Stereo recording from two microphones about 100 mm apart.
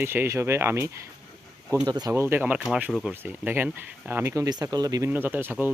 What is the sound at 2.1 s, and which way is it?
Speech, 25° right (ahead or behind).